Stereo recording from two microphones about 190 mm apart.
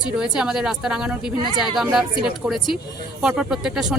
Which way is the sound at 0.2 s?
5° right (ahead or behind).